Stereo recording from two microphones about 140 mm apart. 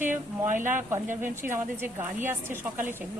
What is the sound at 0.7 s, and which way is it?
A woman's voice, 15° right (ahead or behind).